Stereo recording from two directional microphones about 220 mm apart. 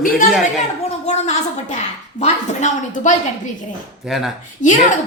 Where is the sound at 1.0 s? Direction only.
30° left (ahead or behind).